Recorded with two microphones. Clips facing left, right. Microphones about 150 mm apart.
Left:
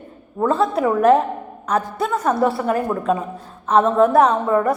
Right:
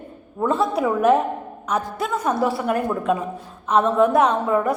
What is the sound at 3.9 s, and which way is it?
Speech, centre (ahead or behind).